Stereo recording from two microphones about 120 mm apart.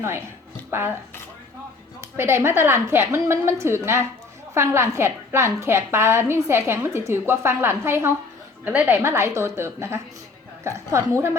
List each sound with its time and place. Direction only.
0.7 s a woman's voice: 20° right (ahead or behind)
2.0 s a woman's voice: 20° right (ahead or behind)